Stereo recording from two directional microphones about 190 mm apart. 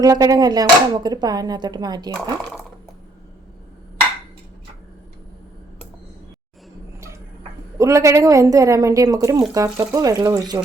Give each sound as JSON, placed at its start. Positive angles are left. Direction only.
{"t": 0.0, "sound": "speech", "side_deg": -20}
{"t": 7.8, "sound": "a woman's voice", "side_deg": -15}